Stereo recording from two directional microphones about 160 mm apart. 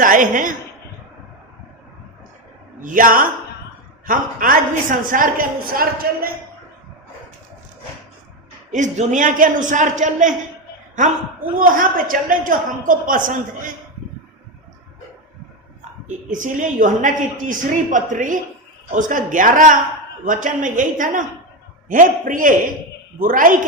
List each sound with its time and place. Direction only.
0.0 s a woman's voice: 60° right (ahead or behind)
2.8 s a woman's voice: 60° right (ahead or behind)
8.7 s a man's voice: 50° right (ahead or behind)
16.0 s a man's voice: 55° right (ahead or behind)